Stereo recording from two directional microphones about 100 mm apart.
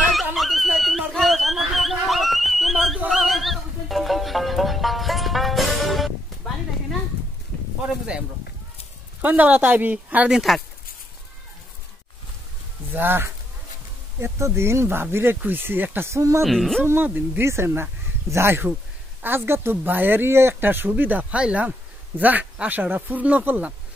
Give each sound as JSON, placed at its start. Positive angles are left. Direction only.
{"t": 0.1, "sound": "a sound", "side_deg": 0}
{"t": 3.1, "sound": "music", "side_deg": 0}
{"t": 9.2, "sound": "speech", "side_deg": -15}
{"t": 12.9, "sound": "speech", "side_deg": -20}
{"t": 16.4, "sound": "speech", "side_deg": 0}
{"t": 16.8, "sound": "speech", "side_deg": -20}